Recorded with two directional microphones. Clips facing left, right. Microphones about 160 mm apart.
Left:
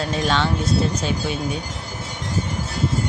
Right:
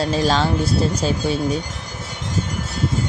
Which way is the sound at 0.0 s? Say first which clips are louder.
Right 3 dB; 35° right (ahead or behind).